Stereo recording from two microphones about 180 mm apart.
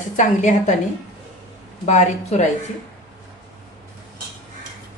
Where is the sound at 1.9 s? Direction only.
40° left (ahead or behind).